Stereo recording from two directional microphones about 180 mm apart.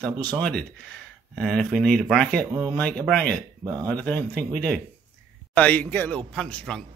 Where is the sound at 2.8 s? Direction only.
5° left (ahead or behind).